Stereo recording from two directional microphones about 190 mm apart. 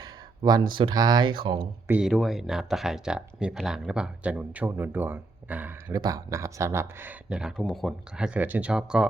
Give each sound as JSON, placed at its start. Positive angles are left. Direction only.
{"t": 0.0, "sound": "a sound", "side_deg": -20}
{"t": 0.8, "sound": "speech", "side_deg": -25}
{"t": 1.9, "sound": "speech", "side_deg": -5}